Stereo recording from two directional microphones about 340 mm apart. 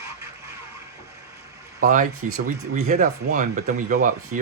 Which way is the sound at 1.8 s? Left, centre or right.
Right.